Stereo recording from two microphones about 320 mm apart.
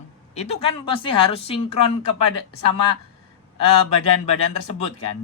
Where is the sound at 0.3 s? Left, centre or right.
Centre.